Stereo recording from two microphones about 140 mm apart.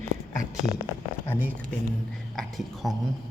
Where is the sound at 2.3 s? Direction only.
Centre (ahead or behind).